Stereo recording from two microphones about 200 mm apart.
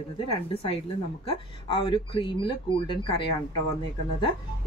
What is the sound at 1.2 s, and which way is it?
Speech, 25° left (ahead or behind).